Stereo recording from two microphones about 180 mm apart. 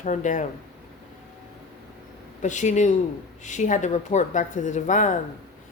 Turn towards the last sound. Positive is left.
turn(degrees=45)  # may be behind; listen again after turning